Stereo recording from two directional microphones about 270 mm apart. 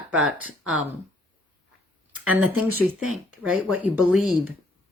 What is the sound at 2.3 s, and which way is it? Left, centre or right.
A woman's voice, centre.